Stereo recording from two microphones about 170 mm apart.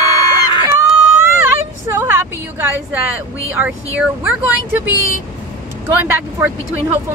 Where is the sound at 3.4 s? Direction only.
10° right (ahead or behind).